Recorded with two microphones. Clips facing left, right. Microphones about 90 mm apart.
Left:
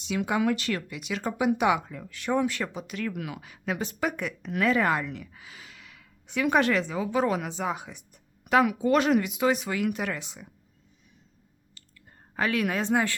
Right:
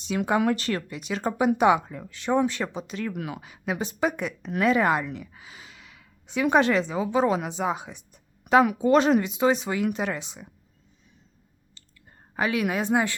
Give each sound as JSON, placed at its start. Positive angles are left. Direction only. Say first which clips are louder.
{"t": 0.0, "sound": "speech", "louder": "right 3 dB", "side_deg": -40}
{"t": 3.4, "sound": "a woman's voice", "louder": "right 1 dB", "side_deg": -20}
{"t": 11.7, "sound": "whispering", "louder": "even", "side_deg": -25}
{"t": 12.3, "sound": "a woman's voice", "louder": "right 1 dB", "side_deg": -15}